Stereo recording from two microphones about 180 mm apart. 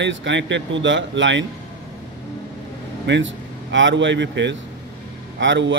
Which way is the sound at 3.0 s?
85° right.